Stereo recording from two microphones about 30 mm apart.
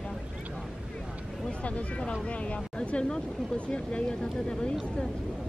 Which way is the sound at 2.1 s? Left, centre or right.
Left.